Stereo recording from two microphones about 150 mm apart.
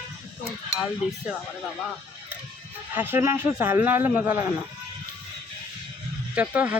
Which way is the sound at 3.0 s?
15° right (ahead or behind).